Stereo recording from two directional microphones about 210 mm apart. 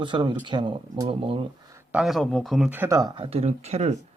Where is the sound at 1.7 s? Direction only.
5° right (ahead or behind); by 4.0 s 30° right (ahead or behind).